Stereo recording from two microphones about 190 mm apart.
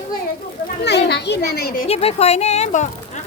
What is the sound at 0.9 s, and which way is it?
Speech, 65° left (ahead or behind).